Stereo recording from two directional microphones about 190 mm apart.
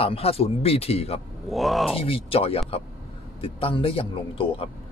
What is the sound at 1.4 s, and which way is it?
Speech, centre (ahead or behind).